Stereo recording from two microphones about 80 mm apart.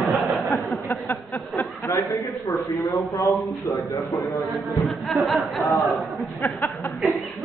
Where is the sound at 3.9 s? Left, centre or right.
Left.